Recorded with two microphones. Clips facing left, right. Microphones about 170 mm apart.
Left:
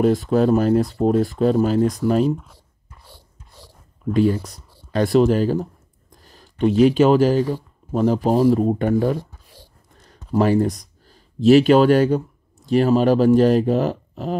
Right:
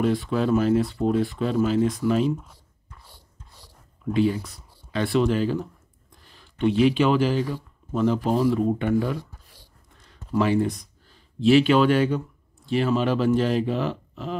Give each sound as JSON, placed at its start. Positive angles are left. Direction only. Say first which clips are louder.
{"t": 0.0, "sound": "speech", "louder": "left 6 dB", "side_deg": 40}
{"t": 4.0, "sound": "speech", "louder": "left 4 dB", "side_deg": 45}
{"t": 10.3, "sound": "speech", "louder": "left 4 dB", "side_deg": 40}